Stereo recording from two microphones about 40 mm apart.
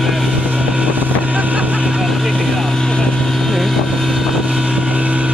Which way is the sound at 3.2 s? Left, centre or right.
Centre.